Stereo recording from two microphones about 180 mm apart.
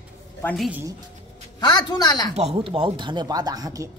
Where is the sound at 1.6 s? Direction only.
25° left (ahead or behind).